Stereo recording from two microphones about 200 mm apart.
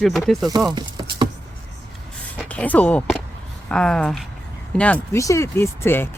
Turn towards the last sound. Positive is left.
turn(degrees=10)  # may be behind; listen again after turning